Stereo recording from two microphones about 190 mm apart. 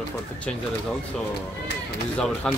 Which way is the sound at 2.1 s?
5° left (ahead or behind).